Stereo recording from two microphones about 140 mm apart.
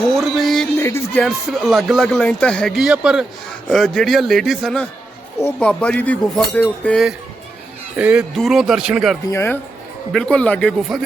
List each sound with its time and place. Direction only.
0.2 s a sound: centre (ahead or behind)
0.8 s music: 15° left (ahead or behind)
1.2 s speech: centre (ahead or behind)
7.9 s speech: 10° right (ahead or behind)
9.3 s speech: 20° left (ahead or behind)
10.1 s speech: 5° left (ahead or behind)